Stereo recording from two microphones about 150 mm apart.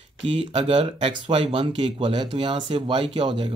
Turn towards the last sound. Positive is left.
turn(degrees=-40)  # may be behind; listen again after turning